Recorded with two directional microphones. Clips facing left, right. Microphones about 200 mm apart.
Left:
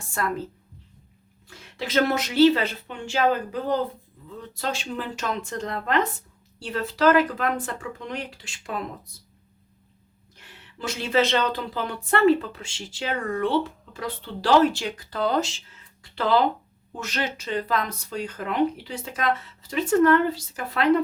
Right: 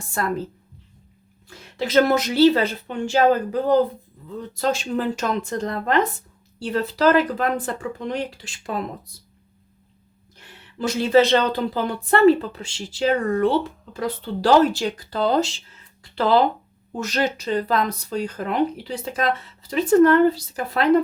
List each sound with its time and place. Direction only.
0.0 s speech: 35° right (ahead or behind)
1.5 s speech: 40° right (ahead or behind)
10.8 s speech: 40° right (ahead or behind)